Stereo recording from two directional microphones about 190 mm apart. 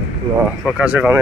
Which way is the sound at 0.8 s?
10° right (ahead or behind).